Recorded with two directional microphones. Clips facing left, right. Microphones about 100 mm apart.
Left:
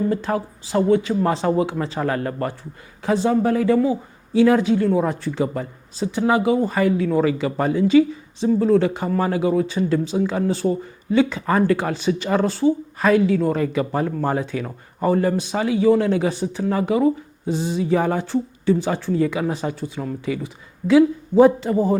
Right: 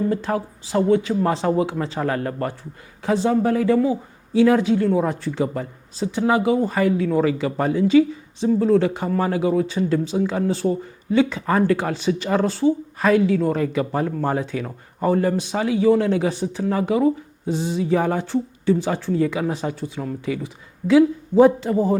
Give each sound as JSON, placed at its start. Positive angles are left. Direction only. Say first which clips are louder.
{"t": 0.0, "sound": "speech", "louder": "even", "side_deg": 20}
{"t": 17.5, "sound": "speech", "louder": "even", "side_deg": 10}